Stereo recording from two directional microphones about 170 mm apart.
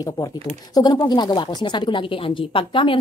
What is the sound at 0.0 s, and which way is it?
Speech, 20° left (ahead or behind).